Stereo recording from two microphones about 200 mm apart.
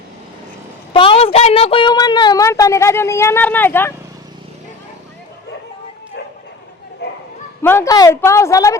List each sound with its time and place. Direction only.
0.9 s speech: 25° left (ahead or behind); by 3.9 s 10° left (ahead or behind)
7.0 s bow-wow: 60° left (ahead or behind)
7.6 s speech: 10° left (ahead or behind)